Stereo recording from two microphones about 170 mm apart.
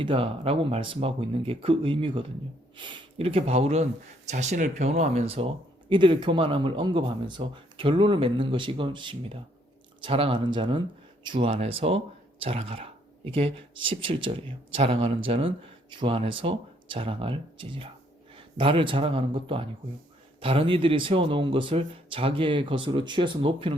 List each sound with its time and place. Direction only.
0.0 s speech: 30° right (ahead or behind)